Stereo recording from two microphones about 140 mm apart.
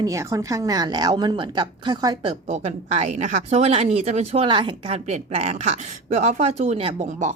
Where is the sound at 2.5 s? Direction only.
50° right (ahead or behind).